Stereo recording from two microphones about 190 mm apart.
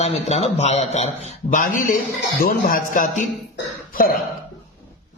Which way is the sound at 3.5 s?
50° left (ahead or behind).